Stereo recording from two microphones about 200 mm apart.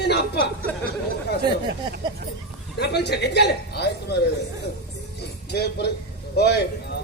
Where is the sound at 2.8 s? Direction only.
55° left (ahead or behind).